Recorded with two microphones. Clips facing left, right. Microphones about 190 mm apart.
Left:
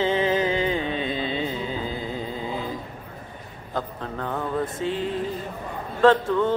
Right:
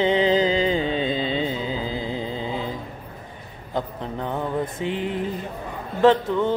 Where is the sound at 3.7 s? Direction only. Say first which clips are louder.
Right 2 dB; 20° right (ahead or behind).